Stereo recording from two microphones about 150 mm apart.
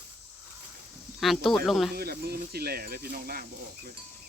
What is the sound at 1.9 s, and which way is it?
Speech, 90° right.